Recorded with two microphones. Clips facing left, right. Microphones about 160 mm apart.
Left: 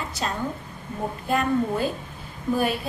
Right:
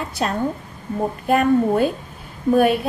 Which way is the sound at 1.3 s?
60° right (ahead or behind).